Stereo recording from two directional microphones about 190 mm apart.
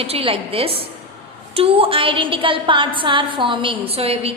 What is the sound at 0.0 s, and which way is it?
A woman's voice, 30° right (ahead or behind).